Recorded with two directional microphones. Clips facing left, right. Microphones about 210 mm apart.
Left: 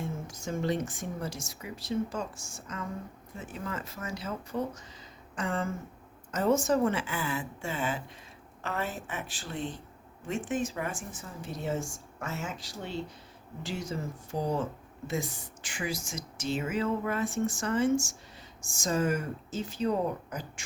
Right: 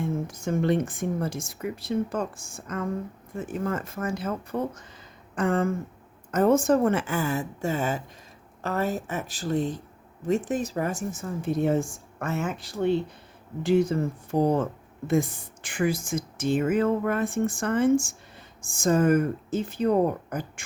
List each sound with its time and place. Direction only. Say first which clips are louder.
0.0 s speech: right 8 dB; 55° right (ahead or behind)